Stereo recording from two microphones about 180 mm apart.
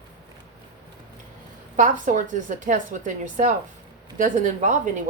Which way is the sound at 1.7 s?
45° right (ahead or behind).